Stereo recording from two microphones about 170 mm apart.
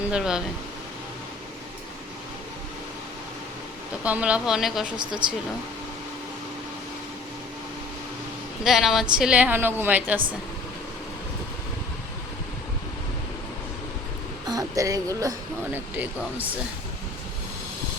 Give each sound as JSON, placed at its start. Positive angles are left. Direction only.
{"t": 0.1, "sound": "speech", "side_deg": -5}
{"t": 4.0, "sound": "speech", "side_deg": -10}
{"t": 8.6, "sound": "a woman's voice", "side_deg": 0}
{"t": 14.4, "sound": "speech", "side_deg": -20}